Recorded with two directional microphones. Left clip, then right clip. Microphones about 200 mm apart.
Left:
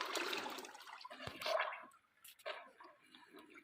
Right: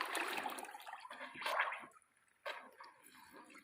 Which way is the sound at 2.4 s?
45° right (ahead or behind).